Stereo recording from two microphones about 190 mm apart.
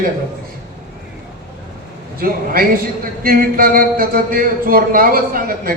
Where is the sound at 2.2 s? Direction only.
50° right (ahead or behind).